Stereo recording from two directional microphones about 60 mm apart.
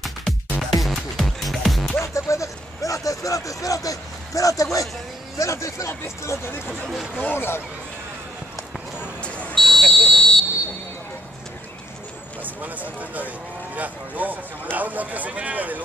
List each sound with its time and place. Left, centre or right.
0.0 s music: centre
2.0 s vehicle: left
5.4 s speech: left
9.2 s buzzer: left
9.6 s buzzer: centre
12.4 s speech: right